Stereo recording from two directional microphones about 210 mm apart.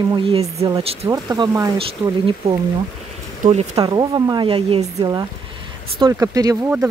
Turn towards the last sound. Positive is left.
turn(degrees=-15)  # may be behind; listen again after turning